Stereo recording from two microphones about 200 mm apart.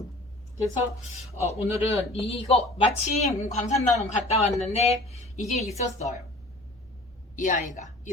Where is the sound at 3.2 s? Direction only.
35° left (ahead or behind).